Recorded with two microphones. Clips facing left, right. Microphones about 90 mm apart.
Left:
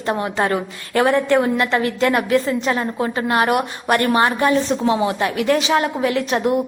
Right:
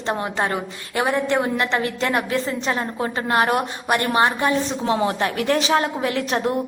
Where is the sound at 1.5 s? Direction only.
30° right (ahead or behind).